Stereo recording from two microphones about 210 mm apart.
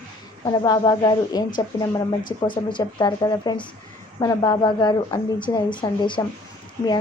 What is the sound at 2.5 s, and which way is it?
Speech, 20° left (ahead or behind).